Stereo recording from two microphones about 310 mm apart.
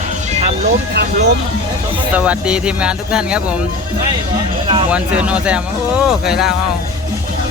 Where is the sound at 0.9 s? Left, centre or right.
Right.